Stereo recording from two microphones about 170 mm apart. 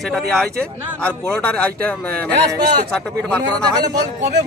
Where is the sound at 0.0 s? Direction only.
Centre (ahead or behind).